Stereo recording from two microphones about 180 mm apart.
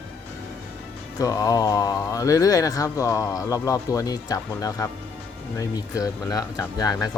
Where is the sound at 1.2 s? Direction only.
20° left (ahead or behind).